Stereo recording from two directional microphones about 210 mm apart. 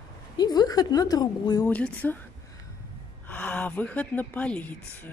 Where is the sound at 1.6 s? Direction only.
5° left (ahead or behind).